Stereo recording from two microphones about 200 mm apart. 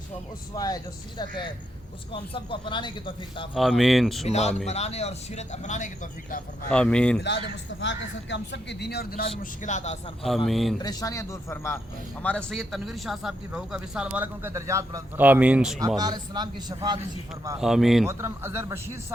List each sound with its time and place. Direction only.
0.5 s speech: 20° left (ahead or behind)
2.3 s speech: 25° left (ahead or behind)
3.5 s speech: centre (ahead or behind)
4.3 s speech: 35° left (ahead or behind)
6.7 s speech: 5° left (ahead or behind)
7.8 s speech: 65° left (ahead or behind); by 9.2 s 50° left (ahead or behind)
9.4 s speech: 40° left (ahead or behind)
10.2 s speech: centre (ahead or behind)
10.8 s speech: 20° left (ahead or behind); by 15.8 s 5° right (ahead or behind)
16.0 s a man's voice: 20° right (ahead or behind)
17.6 s speech: centre (ahead or behind)
18.0 s a man's voice: 15° right (ahead or behind)